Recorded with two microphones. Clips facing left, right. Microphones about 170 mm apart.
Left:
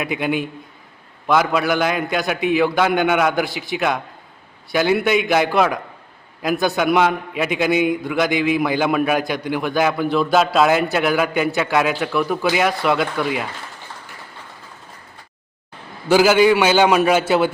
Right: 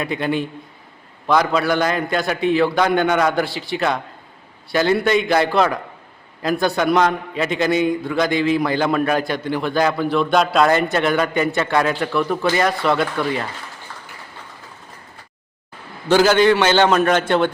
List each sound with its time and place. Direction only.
0.0 s a man's voice: 10° left (ahead or behind)
16.0 s a man's voice: 10° left (ahead or behind)